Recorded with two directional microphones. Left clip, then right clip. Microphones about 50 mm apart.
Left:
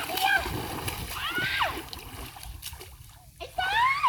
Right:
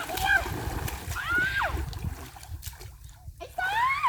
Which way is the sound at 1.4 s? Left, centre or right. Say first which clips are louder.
Right 1 dB; left.